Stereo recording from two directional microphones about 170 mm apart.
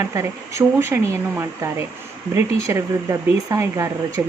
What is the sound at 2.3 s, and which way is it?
Speech, 15° right (ahead or behind).